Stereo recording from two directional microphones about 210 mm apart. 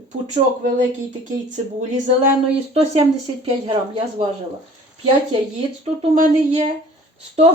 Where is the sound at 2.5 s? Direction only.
30° right (ahead or behind).